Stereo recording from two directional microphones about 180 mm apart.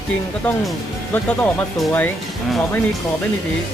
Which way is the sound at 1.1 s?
10° left (ahead or behind).